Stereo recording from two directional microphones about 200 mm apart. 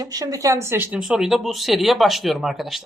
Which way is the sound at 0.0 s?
20° right (ahead or behind).